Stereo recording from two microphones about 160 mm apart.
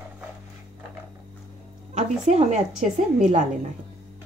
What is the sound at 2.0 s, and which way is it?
A woman's voice, 45° right (ahead or behind).